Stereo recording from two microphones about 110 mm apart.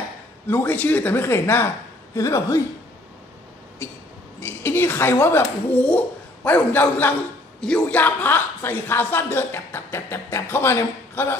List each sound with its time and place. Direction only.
0.5 s a woman's voice: 20° left (ahead or behind)
4.4 s a woman's voice: 20° left (ahead or behind)